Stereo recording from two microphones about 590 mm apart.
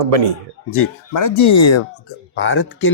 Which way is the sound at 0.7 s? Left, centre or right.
Left.